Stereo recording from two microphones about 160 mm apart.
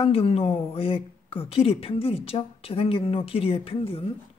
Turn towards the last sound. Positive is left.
turn(degrees=35)  # may be behind; listen again after turning